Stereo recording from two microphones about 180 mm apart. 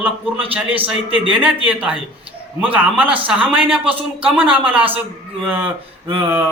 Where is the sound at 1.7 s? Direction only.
10° right (ahead or behind).